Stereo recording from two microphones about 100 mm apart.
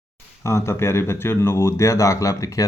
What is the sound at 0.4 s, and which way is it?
Speech, 30° left (ahead or behind).